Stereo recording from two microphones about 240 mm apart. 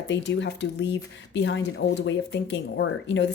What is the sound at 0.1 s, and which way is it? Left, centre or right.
Speech, left.